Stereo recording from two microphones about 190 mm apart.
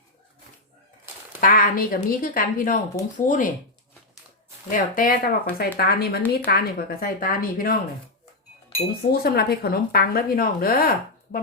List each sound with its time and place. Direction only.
1.4 s a woman's voice: 45° left (ahead or behind)
4.7 s a woman's voice: 45° left (ahead or behind)
9.1 s a woman's voice: 55° left (ahead or behind)